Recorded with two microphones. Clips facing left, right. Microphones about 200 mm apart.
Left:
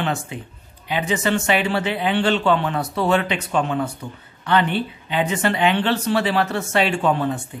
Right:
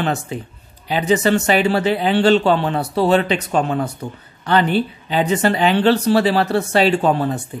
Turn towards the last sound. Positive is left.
turn(degrees=-35)  # may be behind; listen again after turning